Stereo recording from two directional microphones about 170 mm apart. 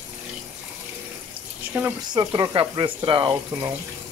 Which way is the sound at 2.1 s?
25° right (ahead or behind).